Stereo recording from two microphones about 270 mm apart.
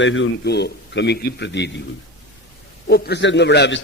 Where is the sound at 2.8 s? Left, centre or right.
Left.